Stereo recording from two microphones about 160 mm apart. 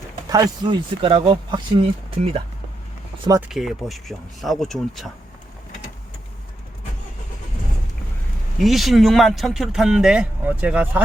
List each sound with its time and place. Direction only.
0.3 s speech: 25° right (ahead or behind)
3.5 s speech: centre (ahead or behind)
8.6 s speech: centre (ahead or behind)